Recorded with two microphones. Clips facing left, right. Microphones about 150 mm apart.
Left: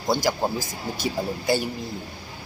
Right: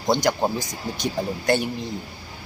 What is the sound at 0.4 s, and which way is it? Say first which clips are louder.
Speech: right 2 dB; 20° right (ahead or behind).